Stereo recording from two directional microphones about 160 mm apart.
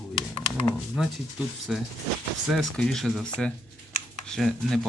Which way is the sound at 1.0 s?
5° right (ahead or behind).